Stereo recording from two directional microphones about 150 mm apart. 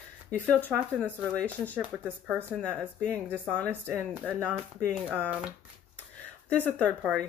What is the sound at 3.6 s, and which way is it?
Speech, 15° right (ahead or behind).